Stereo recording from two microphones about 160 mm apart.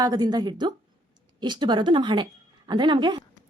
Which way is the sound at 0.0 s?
25° right (ahead or behind).